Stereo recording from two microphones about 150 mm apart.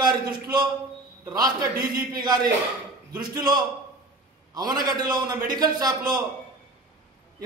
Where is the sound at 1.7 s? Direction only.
80° right.